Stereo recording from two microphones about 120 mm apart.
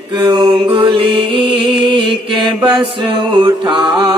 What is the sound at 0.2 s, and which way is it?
Music, 35° right (ahead or behind).